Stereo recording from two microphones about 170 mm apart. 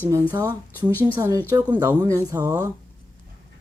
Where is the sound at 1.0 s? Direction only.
15° right (ahead or behind).